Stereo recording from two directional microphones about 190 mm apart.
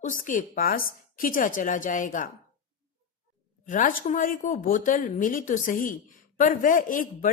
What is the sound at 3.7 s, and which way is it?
Speech, 45° left (ahead or behind).